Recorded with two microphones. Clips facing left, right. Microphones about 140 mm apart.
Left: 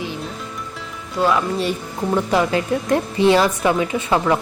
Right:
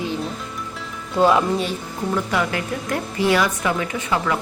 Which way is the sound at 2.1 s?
25° left (ahead or behind).